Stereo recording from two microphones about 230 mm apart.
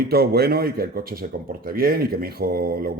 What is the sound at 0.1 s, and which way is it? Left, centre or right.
Speech, right.